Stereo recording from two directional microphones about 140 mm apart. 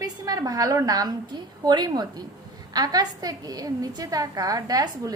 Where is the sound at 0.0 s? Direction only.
25° right (ahead or behind).